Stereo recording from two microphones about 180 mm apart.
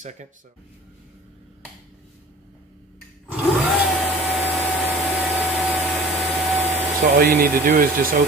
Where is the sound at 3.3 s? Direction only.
Centre (ahead or behind).